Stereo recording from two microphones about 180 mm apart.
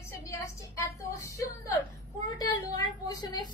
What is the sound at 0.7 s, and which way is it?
Speech, 15° left (ahead or behind).